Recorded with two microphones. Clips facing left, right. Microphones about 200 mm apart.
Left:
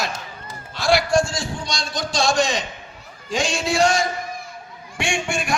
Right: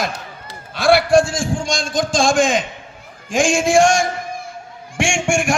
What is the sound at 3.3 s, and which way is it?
Speech, 50° right (ahead or behind).